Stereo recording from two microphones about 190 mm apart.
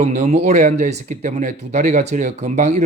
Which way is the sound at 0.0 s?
35° right (ahead or behind).